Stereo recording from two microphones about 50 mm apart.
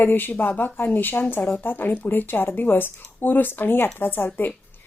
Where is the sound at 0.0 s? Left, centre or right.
Left.